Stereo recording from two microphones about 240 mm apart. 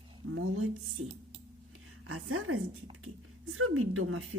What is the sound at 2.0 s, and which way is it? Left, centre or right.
A woman's voice, right.